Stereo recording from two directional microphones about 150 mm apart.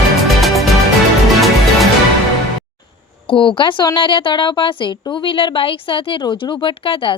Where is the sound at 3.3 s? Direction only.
35° left (ahead or behind).